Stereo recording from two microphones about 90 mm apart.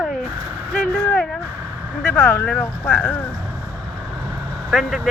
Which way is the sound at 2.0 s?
20° left (ahead or behind).